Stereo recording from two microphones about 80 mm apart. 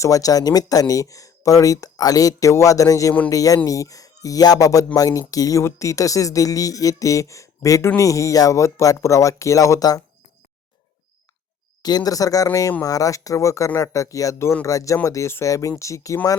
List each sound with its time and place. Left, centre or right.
0.0 s speech: left
11.8 s speech: left